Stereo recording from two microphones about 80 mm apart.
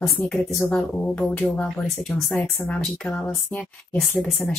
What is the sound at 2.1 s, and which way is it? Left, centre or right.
Speech, centre.